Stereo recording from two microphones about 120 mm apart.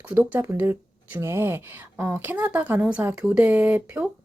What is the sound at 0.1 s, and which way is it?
Speech, 15° right (ahead or behind).